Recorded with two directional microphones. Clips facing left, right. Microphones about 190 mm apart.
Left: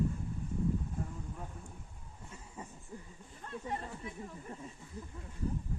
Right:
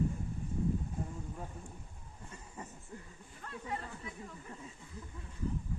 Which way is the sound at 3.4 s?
25° left (ahead or behind).